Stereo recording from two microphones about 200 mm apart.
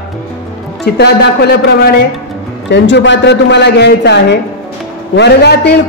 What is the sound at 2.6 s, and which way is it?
A man's voice, 60° left (ahead or behind).